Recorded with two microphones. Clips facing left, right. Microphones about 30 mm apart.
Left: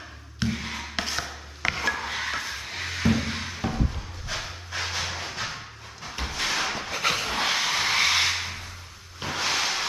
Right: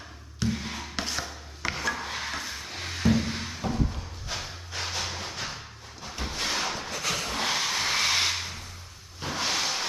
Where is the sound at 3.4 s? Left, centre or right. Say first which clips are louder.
Left 1 dB; left.